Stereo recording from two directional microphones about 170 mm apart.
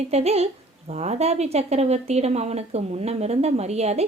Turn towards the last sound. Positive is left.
turn(degrees=-40)  # may be behind; listen again after turning